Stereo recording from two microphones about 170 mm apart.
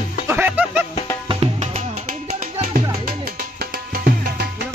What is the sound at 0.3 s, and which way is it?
Music, 15° right (ahead or behind).